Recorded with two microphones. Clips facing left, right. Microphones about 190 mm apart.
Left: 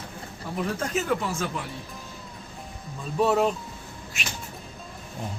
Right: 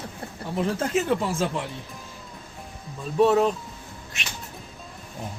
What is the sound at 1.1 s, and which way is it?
Speech, 30° right (ahead or behind).